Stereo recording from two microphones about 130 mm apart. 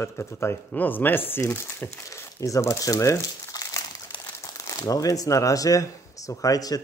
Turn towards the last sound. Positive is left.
turn(degrees=30)  # may be behind; listen again after turning